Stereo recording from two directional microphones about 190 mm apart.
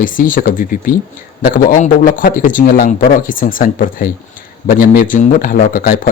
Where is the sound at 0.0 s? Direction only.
45° left (ahead or behind).